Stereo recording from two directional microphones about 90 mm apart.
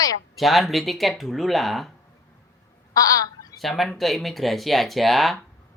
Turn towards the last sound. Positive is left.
turn(degrees=0)  # may be behind; listen again after turning